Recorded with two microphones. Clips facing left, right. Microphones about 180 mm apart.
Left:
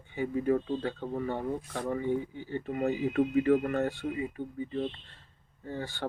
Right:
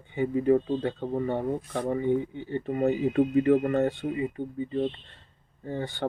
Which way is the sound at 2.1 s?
60° right (ahead or behind).